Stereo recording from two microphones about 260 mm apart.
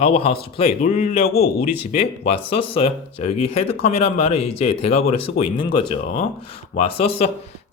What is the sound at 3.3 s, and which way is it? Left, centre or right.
Speech, left.